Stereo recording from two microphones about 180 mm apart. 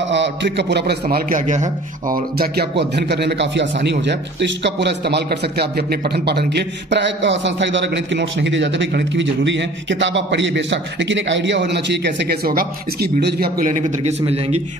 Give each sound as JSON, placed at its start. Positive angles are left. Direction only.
{"t": 0.1, "sound": "a man's voice", "side_deg": -80}